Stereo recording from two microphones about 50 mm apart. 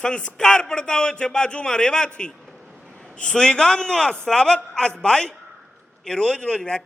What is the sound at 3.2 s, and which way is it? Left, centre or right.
A man's voice, centre.